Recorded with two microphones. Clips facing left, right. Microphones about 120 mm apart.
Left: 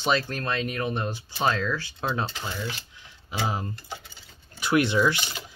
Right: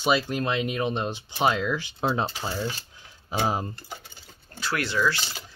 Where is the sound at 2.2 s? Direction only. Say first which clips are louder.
Right 3 dB; 30° right (ahead or behind).